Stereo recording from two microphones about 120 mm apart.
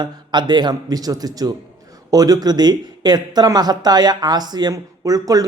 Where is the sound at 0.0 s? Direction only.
35° right (ahead or behind).